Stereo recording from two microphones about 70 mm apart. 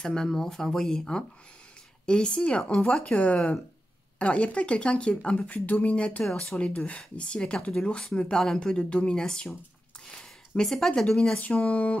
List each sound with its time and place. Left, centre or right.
0.0 s speech: centre
11.3 s speech: centre